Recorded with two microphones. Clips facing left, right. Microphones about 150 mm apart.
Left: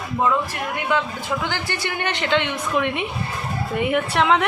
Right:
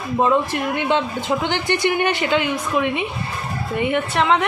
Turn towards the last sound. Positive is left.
turn(degrees=0)  # may be behind; listen again after turning